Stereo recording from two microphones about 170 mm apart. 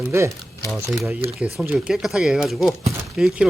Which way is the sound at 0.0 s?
15° right (ahead or behind).